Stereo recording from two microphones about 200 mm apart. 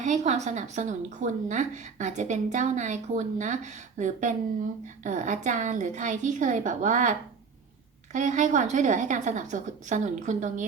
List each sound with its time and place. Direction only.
0.0 s a woman's voice: 35° right (ahead or behind)